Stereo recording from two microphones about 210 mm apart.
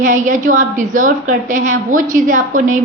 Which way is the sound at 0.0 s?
35° right (ahead or behind).